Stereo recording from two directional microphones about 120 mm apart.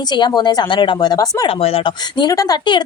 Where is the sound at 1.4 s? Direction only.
50° left (ahead or behind); by 2.8 s 35° left (ahead or behind).